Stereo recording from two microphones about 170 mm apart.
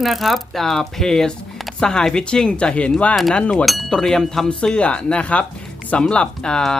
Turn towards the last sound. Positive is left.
turn(degrees=5)  # may be behind; listen again after turning